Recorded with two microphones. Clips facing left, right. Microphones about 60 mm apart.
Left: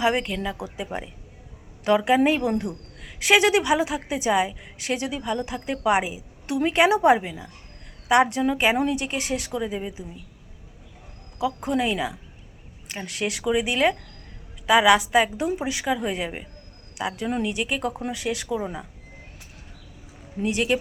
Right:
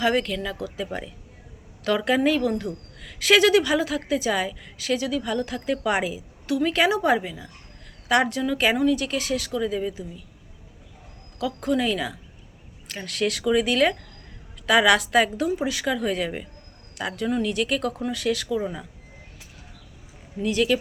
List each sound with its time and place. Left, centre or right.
0.0 s a woman's voice: centre
5.2 s a woman's voice: centre
11.3 s a woman's voice: centre
17.0 s a woman's voice: centre
17.2 s a woman's voice: left
20.4 s a woman's voice: left